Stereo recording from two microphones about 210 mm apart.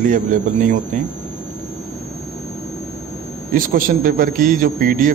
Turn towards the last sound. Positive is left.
turn(degrees=-40)  # may be behind; listen again after turning